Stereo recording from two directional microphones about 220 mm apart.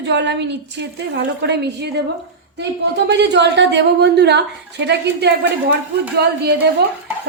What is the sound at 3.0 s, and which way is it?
Speech, 50° right (ahead or behind).